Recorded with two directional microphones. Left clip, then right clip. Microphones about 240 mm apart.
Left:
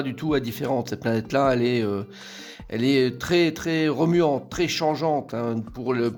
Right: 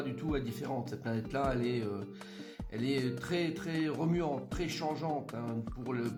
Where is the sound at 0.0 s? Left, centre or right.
Left.